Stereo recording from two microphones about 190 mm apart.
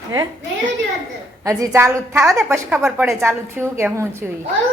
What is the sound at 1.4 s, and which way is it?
A woman's voice, 15° right (ahead or behind).